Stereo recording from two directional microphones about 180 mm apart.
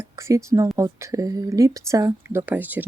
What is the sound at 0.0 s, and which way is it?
Speech, 15° right (ahead or behind).